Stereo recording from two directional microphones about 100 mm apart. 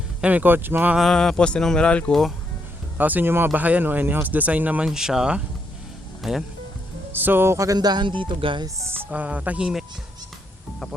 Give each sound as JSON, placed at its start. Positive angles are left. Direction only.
{"t": 0.2, "sound": "speech", "side_deg": -15}
{"t": 0.9, "sound": "speech", "side_deg": 0}
{"t": 3.0, "sound": "speech", "side_deg": -20}
{"t": 7.1, "sound": "speech", "side_deg": -20}
{"t": 7.8, "sound": "speech", "side_deg": -45}
{"t": 8.6, "sound": "speech", "side_deg": -25}